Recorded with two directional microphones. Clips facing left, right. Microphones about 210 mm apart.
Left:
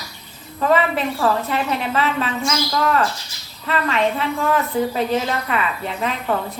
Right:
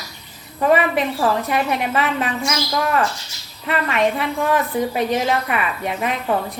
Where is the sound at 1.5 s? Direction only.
15° right (ahead or behind).